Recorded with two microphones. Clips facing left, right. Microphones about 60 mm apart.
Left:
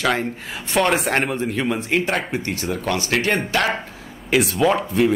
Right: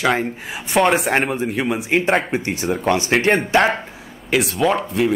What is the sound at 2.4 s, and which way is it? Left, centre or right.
Speech, centre.